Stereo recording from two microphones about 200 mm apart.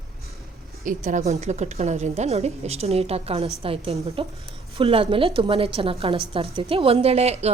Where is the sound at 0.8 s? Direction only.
40° right (ahead or behind).